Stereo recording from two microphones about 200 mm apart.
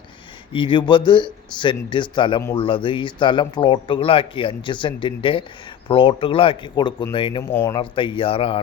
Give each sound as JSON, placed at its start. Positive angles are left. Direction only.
{"t": 0.5, "sound": "speech", "side_deg": 25}